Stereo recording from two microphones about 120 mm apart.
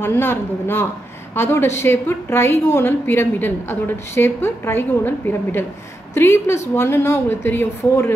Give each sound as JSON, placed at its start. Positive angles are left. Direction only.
{"t": 0.0, "sound": "a woman's voice", "side_deg": 20}